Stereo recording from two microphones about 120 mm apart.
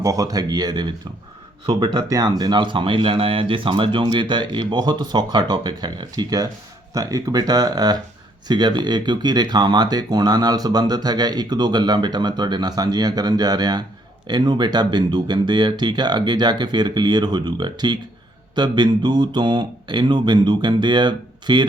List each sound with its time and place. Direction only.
0.0 s speech: 30° right (ahead or behind)